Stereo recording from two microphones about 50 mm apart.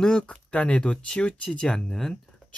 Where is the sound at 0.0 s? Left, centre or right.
Centre.